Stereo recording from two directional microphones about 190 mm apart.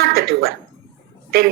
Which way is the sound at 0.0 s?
55° right (ahead or behind).